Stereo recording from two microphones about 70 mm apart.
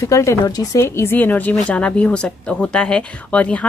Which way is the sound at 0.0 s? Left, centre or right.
Left.